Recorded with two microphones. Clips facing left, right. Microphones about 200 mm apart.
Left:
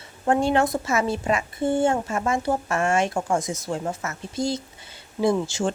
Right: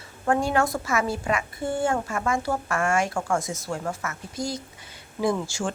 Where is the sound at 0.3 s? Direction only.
25° left (ahead or behind).